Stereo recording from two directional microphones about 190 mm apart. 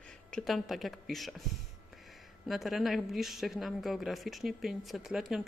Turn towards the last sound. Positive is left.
turn(degrees=0)  # may be behind; listen again after turning